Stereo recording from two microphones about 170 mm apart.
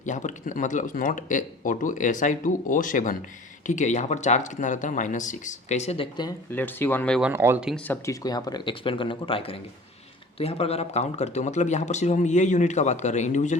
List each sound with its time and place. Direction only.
0.0 s speech: 45° left (ahead or behind)
6.5 s speech: 10° left (ahead or behind)
7.2 s speech: 10° right (ahead or behind)
7.9 s speech: 20° left (ahead or behind); by 13.6 s 45° left (ahead or behind)